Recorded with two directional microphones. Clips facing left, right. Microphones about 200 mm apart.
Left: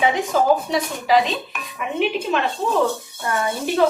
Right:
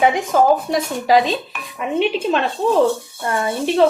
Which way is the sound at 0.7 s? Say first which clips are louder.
Right 3 dB; 40° right (ahead or behind).